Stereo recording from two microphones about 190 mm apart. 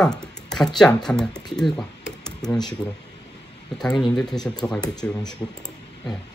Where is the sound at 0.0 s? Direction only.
5° left (ahead or behind).